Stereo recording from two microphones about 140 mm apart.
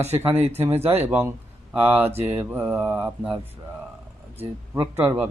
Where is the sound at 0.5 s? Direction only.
15° right (ahead or behind).